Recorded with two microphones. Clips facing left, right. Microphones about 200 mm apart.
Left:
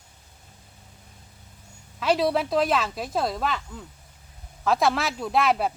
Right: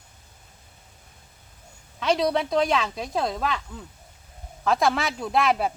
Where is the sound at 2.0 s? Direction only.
5° left (ahead or behind).